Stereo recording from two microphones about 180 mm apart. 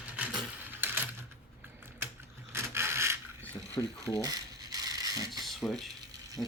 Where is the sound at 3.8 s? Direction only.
15° left (ahead or behind).